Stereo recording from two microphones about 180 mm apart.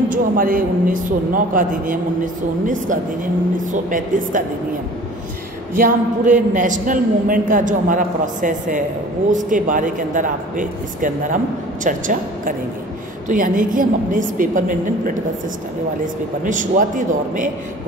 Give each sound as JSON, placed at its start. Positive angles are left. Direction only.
{"t": 0.1, "sound": "speech", "side_deg": -50}
{"t": 5.8, "sound": "speech", "side_deg": -45}
{"t": 16.4, "sound": "speech", "side_deg": -45}